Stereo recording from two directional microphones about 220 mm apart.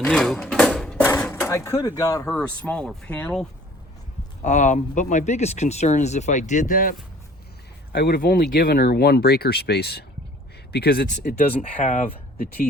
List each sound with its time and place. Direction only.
0.0 s a sound: 5° left (ahead or behind)
1.0 s speech: 10° left (ahead or behind)
2.2 s speech: 5° left (ahead or behind)
4.4 s speech: 35° left (ahead or behind)
7.9 s speech: 45° left (ahead or behind)